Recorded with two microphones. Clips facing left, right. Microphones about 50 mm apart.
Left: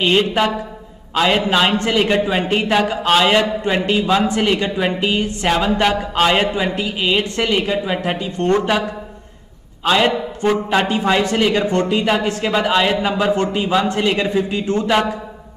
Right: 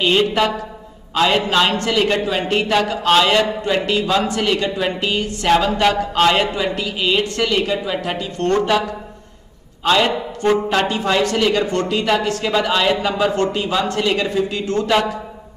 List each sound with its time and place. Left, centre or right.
0.0 s a man's voice: centre
1.7 s a man's voice: left
9.8 s a man's voice: centre; by 14.9 s left